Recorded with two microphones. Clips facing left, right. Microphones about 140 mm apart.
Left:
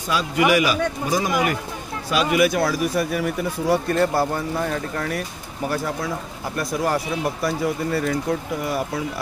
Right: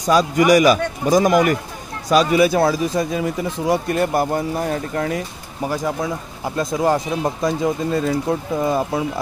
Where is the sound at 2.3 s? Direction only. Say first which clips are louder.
Right 4 dB; 30° right (ahead or behind).